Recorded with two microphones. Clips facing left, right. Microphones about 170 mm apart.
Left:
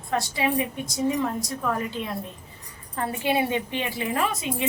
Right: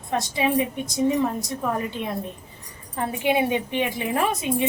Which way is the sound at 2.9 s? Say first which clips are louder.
Right 2 dB; 15° right (ahead or behind).